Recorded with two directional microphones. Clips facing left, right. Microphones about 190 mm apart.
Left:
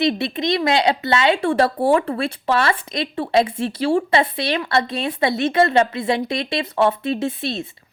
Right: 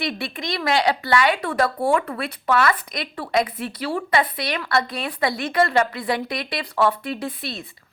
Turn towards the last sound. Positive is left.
turn(degrees=25)  # may be behind; listen again after turning